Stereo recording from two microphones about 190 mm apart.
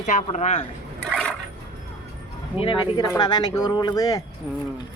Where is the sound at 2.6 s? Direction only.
25° left (ahead or behind).